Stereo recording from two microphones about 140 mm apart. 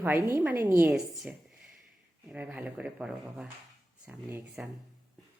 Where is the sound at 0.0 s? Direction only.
15° right (ahead or behind).